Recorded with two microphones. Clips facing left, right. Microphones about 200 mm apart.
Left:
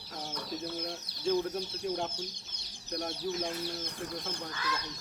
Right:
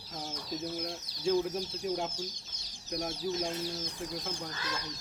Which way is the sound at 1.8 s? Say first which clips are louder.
Even; 5° right (ahead or behind).